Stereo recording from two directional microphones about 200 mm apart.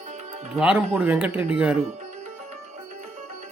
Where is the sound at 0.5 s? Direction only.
5° right (ahead or behind).